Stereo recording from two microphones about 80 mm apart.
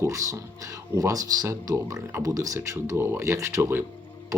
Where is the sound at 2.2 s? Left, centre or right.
Right.